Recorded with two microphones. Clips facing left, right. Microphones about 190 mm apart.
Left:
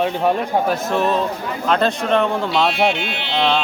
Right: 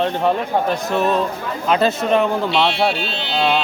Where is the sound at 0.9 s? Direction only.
Centre (ahead or behind).